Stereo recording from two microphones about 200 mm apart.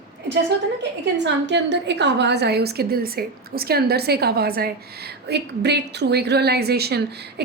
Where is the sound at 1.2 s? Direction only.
60° right (ahead or behind).